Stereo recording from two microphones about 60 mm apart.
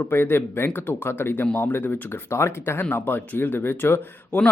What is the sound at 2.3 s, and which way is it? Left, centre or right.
Speech, left.